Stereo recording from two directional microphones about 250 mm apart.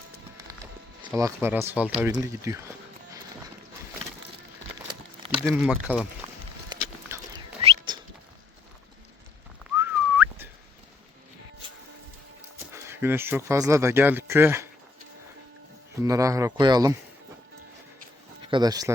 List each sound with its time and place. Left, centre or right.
0.4 s clip-clop: centre
1.2 s speech: centre
5.5 s speech: centre
6.7 s a sound: centre
7.6 s bird: right
9.7 s whistling: centre
12.7 s speech: centre
16.0 s speech: centre
18.4 s speech: centre